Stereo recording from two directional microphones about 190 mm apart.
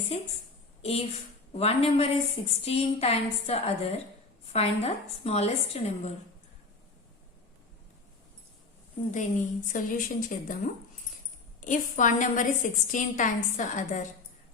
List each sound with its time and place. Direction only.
0.1 s a woman's voice: 35° left (ahead or behind)
9.1 s a woman's voice: 45° left (ahead or behind)
11.6 s a woman's voice: 40° left (ahead or behind)